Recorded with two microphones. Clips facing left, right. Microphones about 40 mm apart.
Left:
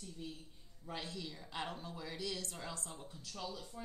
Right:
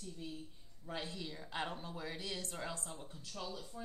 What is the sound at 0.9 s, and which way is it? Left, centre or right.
Speech, centre.